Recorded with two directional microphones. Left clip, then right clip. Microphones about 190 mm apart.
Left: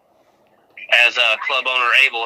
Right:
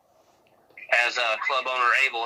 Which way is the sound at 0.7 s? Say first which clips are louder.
Left 9 dB; 25° left (ahead or behind).